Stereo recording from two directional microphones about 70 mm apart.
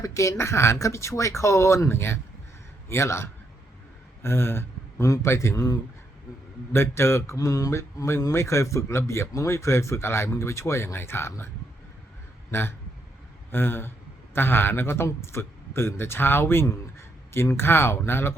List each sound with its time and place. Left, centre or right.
0.0 s a man's voice: left
6.7 s a man's voice: left
7.3 s mantra: left
7.7 s a man's voice: left